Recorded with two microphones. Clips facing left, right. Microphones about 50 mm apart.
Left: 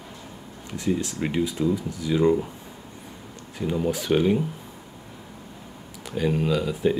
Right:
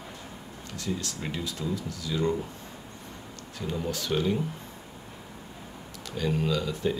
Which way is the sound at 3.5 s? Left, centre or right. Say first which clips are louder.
Left 7 dB; centre.